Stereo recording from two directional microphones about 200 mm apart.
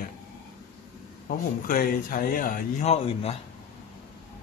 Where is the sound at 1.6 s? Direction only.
45° left (ahead or behind).